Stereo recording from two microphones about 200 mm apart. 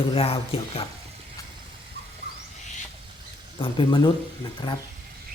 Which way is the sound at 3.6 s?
25° left (ahead or behind).